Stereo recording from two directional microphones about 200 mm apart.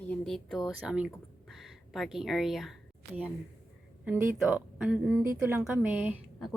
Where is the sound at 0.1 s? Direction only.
Centre (ahead or behind).